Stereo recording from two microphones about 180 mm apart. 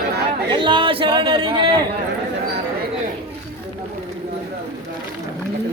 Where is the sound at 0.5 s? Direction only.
25° right (ahead or behind).